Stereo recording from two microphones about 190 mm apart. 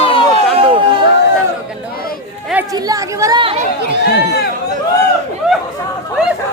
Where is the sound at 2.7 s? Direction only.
20° right (ahead or behind).